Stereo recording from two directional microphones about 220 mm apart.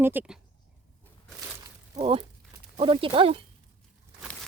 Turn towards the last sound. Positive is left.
turn(degrees=-25)  # may be behind; listen again after turning